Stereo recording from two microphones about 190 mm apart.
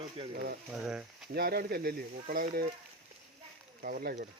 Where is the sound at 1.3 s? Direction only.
55° right (ahead or behind).